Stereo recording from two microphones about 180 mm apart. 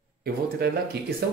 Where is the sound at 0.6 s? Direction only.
60° right (ahead or behind).